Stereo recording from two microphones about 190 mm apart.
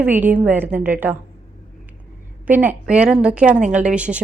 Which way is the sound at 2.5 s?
10° right (ahead or behind).